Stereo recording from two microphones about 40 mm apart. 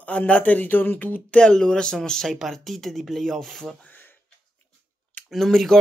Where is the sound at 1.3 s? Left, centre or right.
Centre.